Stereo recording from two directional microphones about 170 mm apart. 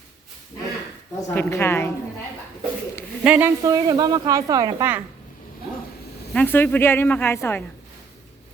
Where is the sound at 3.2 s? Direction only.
10° right (ahead or behind).